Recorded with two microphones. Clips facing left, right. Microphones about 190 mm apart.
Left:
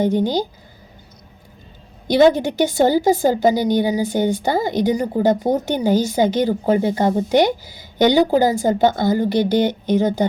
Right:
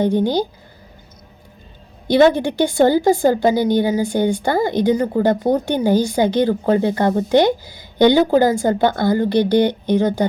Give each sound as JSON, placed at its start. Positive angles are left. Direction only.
{"t": 2.0, "sound": "a woman's voice", "side_deg": 15}
{"t": 9.6, "sound": "speech", "side_deg": -15}